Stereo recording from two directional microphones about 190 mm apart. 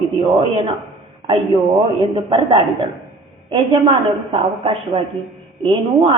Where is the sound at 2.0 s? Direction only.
25° right (ahead or behind).